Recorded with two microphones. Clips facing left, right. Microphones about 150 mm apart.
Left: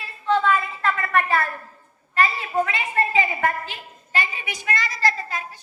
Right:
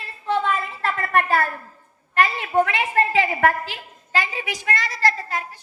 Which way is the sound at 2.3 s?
65° right (ahead or behind).